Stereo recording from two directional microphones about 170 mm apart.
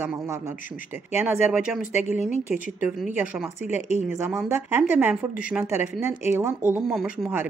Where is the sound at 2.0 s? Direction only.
45° left (ahead or behind).